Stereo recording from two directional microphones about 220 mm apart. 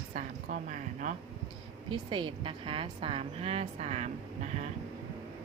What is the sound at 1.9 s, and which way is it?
A woman's voice, 20° right (ahead or behind).